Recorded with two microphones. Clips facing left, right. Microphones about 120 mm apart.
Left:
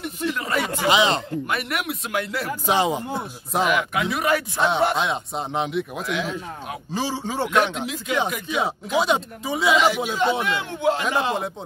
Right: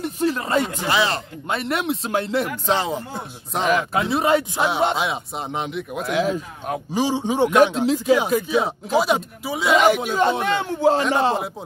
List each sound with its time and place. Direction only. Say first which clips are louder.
0.0 s a sound: right 4 dB; 35° right (ahead or behind)
0.8 s speech: left 2 dB; 20° left (ahead or behind)
1.5 s speech: right 7 dB; 30° right (ahead or behind)
2.6 s speech: left 1 dB; 15° left (ahead or behind)
3.6 s speech: right 3 dB; 35° right (ahead or behind)
4.6 s speech: even; 10° right (ahead or behind)
6.1 s speech: right 8 dB; 45° right (ahead or behind)
6.9 s speech: right 5 dB; 15° right (ahead or behind)
7.4 s speech: right 6 dB; 45° right (ahead or behind)
7.8 s speech: right 7 dB; 30° right (ahead or behind)
8.5 s speech: even; centre (ahead or behind)
10.0 s speech: right 2 dB; 50° right (ahead or behind)